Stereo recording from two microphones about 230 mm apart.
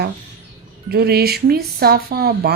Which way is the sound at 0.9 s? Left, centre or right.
Right.